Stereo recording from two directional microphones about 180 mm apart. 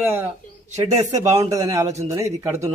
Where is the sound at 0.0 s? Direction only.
10° right (ahead or behind).